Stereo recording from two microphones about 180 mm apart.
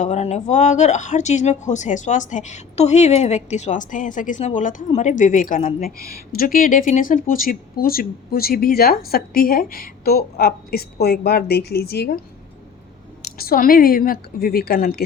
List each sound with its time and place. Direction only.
0.0 s a woman's voice: 40° left (ahead or behind); by 12.1 s 60° left (ahead or behind)
13.4 s a woman's voice: 55° left (ahead or behind)